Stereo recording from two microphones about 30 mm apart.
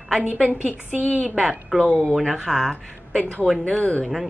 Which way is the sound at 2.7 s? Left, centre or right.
Left.